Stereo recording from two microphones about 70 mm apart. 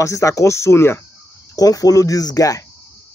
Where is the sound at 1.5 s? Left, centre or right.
Left.